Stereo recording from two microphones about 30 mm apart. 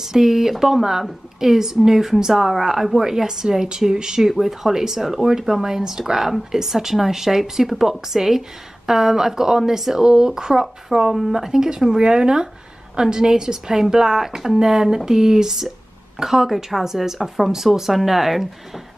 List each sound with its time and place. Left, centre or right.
0.0 s speech: centre
4.2 s speech: centre
12.0 s speech: right; by 18.8 s centre